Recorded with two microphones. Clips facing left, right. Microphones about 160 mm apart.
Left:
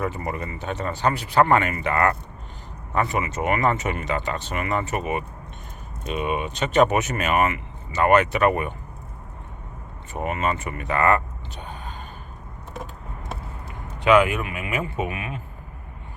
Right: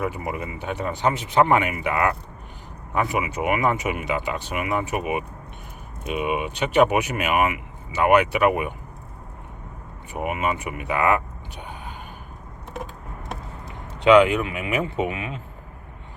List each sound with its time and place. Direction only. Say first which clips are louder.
0.0 s speech: even; 10° right (ahead or behind)
10.1 s speech: even; 10° right (ahead or behind)
14.0 s speech: right 3 dB; 20° right (ahead or behind)